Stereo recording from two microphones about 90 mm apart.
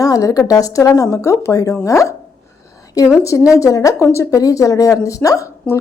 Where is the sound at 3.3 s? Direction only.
35° left (ahead or behind).